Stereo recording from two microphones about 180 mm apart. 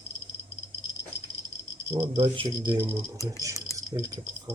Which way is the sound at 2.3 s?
30° right (ahead or behind).